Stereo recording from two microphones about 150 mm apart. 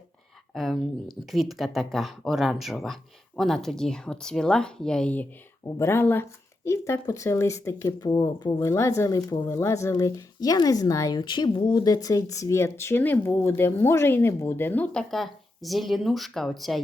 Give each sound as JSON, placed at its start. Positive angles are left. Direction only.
{"t": 0.5, "sound": "speech", "side_deg": 0}